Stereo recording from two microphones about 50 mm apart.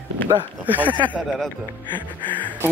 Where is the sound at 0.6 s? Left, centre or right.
Right.